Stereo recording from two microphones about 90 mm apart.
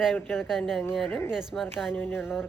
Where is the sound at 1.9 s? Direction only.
25° left (ahead or behind).